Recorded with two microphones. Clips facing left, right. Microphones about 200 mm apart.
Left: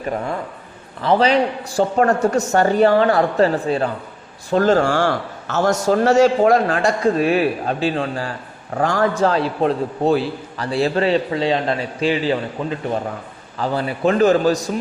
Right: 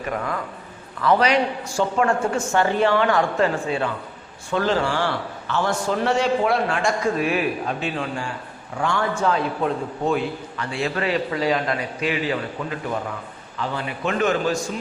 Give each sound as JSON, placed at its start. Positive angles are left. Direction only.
{"t": 0.0, "sound": "a man's voice", "side_deg": 30}
{"t": 13.6, "sound": "a man's voice", "side_deg": 35}